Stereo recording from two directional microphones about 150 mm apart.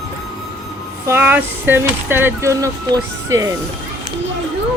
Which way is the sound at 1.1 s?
15° right (ahead or behind).